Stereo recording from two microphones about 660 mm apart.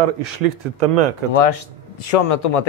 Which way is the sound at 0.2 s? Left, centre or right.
Right.